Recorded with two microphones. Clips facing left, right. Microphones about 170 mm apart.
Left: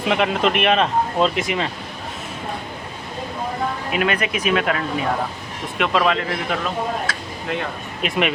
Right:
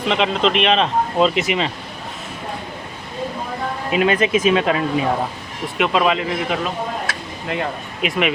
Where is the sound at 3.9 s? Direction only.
25° right (ahead or behind).